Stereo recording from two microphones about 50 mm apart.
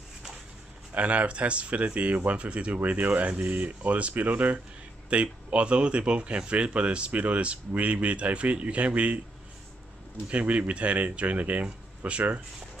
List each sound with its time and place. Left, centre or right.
0.9 s speech: right
10.3 s speech: right